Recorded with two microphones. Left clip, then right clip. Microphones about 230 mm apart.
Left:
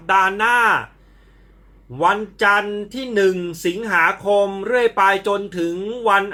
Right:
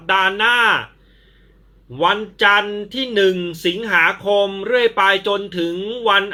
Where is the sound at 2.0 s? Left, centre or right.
Centre.